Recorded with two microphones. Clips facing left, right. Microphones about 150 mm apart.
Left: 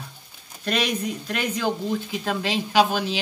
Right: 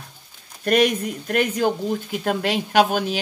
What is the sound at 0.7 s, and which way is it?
Speech, 50° right (ahead or behind).